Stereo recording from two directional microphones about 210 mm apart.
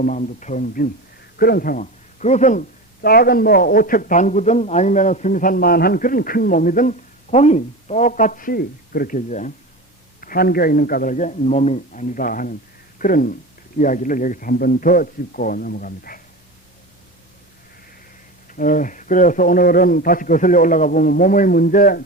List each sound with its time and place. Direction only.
0.0 s speech: 40° left (ahead or behind)
18.4 s speech: 40° left (ahead or behind)